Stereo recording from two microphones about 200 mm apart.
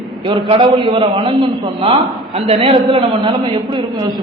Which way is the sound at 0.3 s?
25° right (ahead or behind).